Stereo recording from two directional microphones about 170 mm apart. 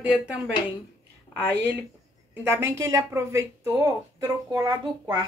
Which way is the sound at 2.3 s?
15° right (ahead or behind).